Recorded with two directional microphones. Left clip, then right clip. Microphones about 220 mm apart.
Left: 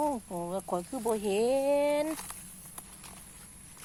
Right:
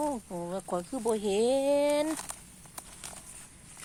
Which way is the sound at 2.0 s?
35° right (ahead or behind).